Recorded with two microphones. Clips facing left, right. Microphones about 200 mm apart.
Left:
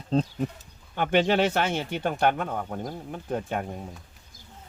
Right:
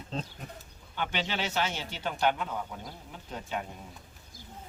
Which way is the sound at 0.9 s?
55° left (ahead or behind).